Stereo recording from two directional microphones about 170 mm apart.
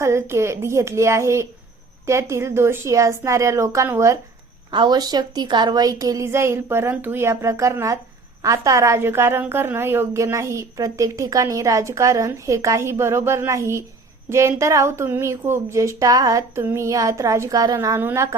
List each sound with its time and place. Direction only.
0.0 s a woman's voice: 15° right (ahead or behind)
4.7 s a woman's voice: 25° right (ahead or behind)